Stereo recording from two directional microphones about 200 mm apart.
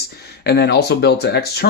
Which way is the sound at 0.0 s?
55° left (ahead or behind).